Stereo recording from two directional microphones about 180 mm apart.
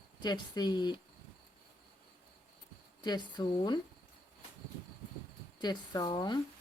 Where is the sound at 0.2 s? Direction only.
25° left (ahead or behind).